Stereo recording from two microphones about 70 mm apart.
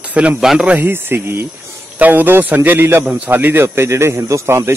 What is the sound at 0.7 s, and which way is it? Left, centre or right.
Speech, right.